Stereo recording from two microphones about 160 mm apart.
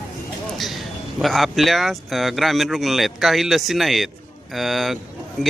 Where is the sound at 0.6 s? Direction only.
Centre (ahead or behind).